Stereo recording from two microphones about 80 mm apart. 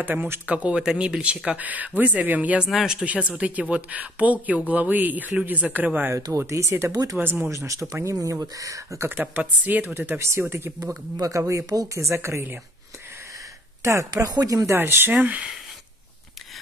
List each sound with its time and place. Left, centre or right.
0.0 s speech: right
2.7 s speech: centre
3.3 s speech: centre
6.1 s speech: right
7.2 s speech: right
7.5 s speech: right
9.1 s speech: right
14.1 s speech: right
14.8 s speech: right